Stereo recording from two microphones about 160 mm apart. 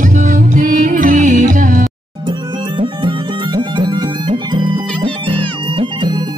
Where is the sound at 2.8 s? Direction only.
30° right (ahead or behind).